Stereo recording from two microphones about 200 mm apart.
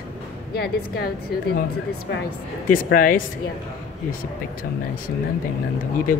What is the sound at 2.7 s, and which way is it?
Speech, 45° left (ahead or behind).